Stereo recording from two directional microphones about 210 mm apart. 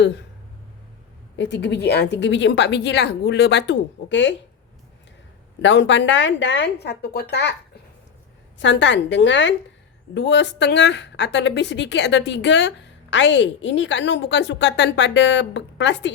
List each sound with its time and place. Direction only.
1.4 s speech: 55° left (ahead or behind)
5.6 s speech: 60° left (ahead or behind)
8.5 s speech: 60° left (ahead or behind)